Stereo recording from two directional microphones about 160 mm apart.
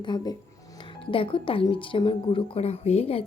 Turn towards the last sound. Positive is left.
turn(degrees=40)  # may be behind; listen again after turning